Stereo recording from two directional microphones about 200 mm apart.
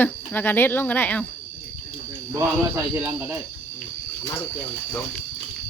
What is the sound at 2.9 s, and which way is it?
Speech, 10° right (ahead or behind).